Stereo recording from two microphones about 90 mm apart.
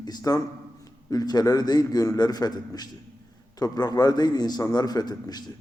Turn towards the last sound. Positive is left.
turn(degrees=50)  # may be behind; listen again after turning